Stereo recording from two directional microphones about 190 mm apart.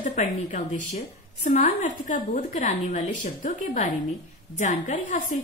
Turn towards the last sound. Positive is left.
turn(degrees=40)  # may be behind; listen again after turning